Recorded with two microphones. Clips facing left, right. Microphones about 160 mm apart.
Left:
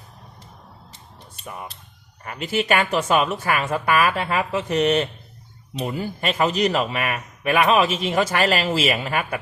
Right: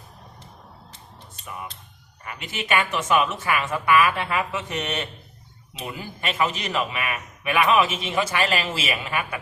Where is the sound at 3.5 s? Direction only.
50° left (ahead or behind).